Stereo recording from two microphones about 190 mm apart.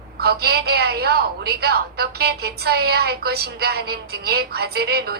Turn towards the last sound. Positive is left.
turn(degrees=-55)  # may be behind; listen again after turning